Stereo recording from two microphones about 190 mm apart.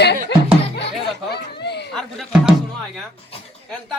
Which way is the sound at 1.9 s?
Centre (ahead or behind).